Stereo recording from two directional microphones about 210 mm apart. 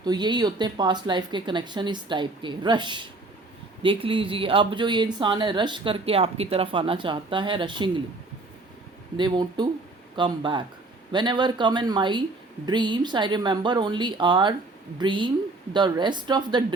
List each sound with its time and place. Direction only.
0.0 s speech: 20° right (ahead or behind)
9.1 s speech: 20° right (ahead or behind)